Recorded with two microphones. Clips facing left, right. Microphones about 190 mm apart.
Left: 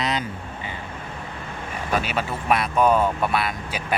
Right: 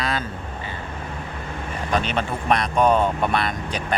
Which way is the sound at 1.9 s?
5° left (ahead or behind).